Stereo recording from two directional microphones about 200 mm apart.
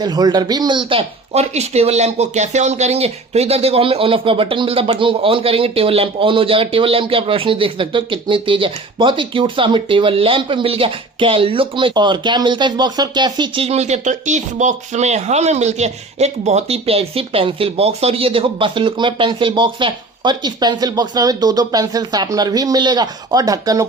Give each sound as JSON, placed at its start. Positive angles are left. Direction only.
{"t": 0.0, "sound": "speech", "side_deg": -20}